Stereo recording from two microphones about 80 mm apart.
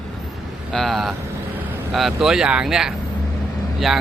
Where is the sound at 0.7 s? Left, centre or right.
Centre.